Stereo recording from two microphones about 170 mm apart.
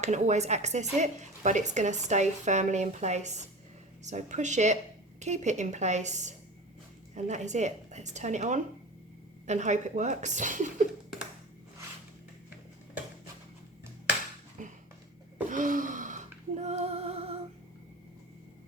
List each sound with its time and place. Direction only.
0.0 s a woman's voice: 40° right (ahead or behind)
14.6 s a sound: 50° right (ahead or behind)
15.4 s music: 50° right (ahead or behind)